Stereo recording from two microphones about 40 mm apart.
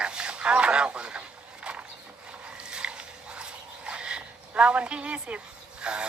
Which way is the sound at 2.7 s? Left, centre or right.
Right.